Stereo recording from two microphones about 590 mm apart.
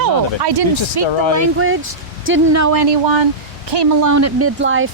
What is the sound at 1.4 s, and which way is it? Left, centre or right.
Speech, right.